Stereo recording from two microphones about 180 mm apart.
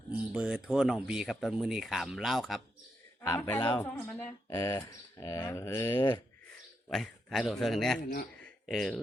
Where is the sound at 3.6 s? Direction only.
25° left (ahead or behind).